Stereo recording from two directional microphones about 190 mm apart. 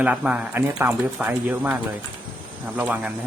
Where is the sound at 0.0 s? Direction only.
5° right (ahead or behind).